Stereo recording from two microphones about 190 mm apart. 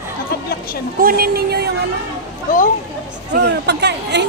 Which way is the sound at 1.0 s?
50° right (ahead or behind).